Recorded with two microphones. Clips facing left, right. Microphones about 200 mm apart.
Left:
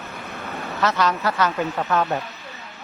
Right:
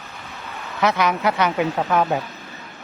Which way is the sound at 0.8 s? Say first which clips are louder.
Right 2 dB; 15° right (ahead or behind).